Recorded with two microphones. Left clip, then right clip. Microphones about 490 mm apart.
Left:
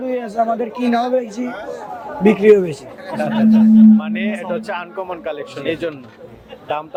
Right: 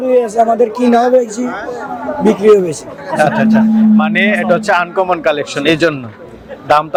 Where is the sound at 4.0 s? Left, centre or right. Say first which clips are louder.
Right 11 dB; right.